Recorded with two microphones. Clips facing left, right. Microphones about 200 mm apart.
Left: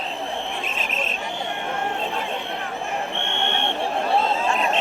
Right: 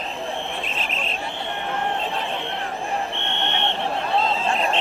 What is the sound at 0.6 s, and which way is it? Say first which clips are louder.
Cricket: left 1 dB; 45° left (ahead or behind).